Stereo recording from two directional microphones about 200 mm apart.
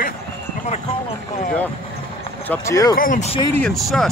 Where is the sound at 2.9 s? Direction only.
40° left (ahead or behind).